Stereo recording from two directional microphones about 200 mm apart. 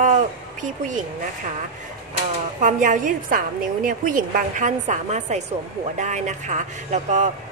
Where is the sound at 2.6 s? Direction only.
40° right (ahead or behind).